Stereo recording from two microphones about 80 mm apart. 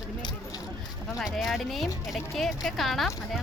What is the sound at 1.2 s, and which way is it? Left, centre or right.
Speech, centre.